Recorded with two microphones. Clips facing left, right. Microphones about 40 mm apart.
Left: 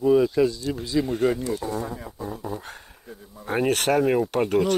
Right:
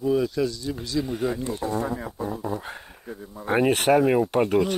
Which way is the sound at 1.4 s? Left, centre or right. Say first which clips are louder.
Right 1 dB; right.